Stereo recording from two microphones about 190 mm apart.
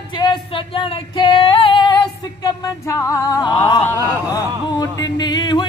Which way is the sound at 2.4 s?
15° left (ahead or behind).